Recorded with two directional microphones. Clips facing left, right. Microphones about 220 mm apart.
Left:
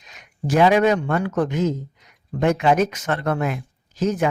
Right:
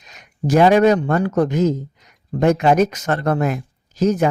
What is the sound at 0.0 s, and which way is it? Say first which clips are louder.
Speech: right 5 dB; 40° right (ahead or behind).